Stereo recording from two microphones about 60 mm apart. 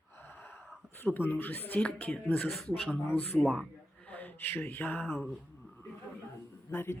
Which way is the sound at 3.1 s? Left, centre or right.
Left.